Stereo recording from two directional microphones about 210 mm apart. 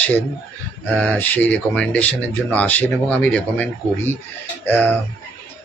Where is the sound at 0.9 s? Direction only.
5° left (ahead or behind).